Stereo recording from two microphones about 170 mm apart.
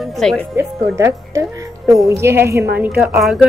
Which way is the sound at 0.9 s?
15° right (ahead or behind).